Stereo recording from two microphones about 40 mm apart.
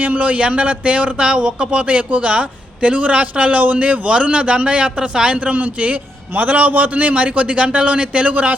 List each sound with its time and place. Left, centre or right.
0.0 s a man's voice: right
1.9 s a man's voice: right